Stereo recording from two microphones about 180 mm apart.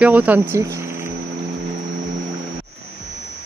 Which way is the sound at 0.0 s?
10° right (ahead or behind).